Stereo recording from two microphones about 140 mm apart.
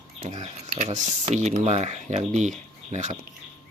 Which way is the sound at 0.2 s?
55° right (ahead or behind).